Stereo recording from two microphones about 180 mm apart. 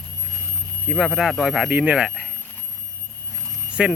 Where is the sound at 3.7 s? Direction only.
5° right (ahead or behind).